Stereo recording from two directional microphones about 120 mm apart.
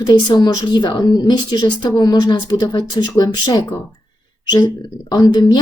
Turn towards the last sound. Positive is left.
turn(degrees=35)  # may be behind; listen again after turning